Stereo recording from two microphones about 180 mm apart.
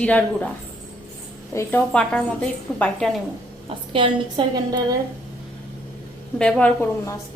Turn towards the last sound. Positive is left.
turn(degrees=15)  # may be behind; listen again after turning